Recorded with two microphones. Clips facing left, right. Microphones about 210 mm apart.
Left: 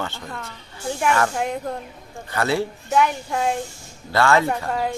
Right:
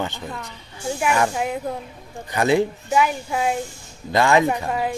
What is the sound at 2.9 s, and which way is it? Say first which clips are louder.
Speech: even; 5° right (ahead or behind).